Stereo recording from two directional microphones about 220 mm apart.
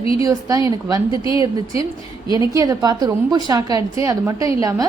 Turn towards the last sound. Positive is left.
turn(degrees=-15)  # may be behind; listen again after turning